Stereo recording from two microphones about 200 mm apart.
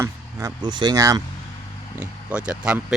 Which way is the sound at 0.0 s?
15° right (ahead or behind).